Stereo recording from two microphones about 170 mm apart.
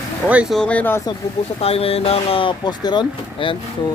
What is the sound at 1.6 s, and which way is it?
Speech, 35° left (ahead or behind).